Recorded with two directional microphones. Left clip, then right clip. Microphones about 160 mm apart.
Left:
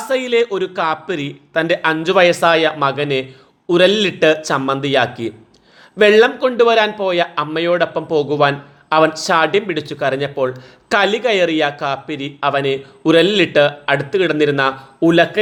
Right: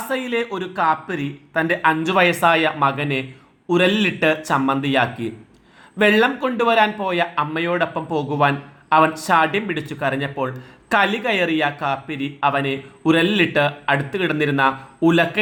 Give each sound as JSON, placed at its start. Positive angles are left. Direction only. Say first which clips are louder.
{"t": 0.0, "sound": "a man's voice", "louder": "left 7 dB", "side_deg": 30}